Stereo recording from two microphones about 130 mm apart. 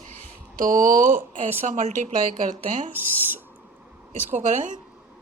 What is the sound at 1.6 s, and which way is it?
A woman's voice, 65° right (ahead or behind).